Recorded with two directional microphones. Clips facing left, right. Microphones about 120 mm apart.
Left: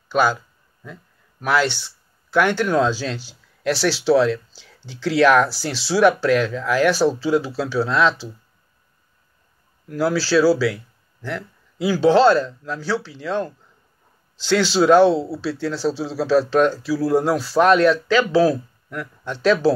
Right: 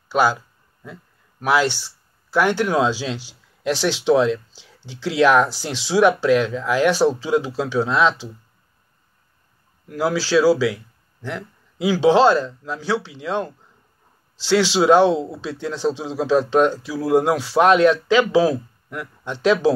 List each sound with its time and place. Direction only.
0.1 s speech: 10° right (ahead or behind)
1.4 s speech: 10° right (ahead or behind)
9.9 s speech: 15° right (ahead or behind)